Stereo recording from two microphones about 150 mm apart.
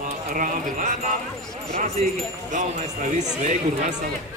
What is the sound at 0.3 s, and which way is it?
Speech, 60° right (ahead or behind).